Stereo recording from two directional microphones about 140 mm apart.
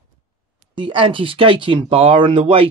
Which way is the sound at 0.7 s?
40° right (ahead or behind).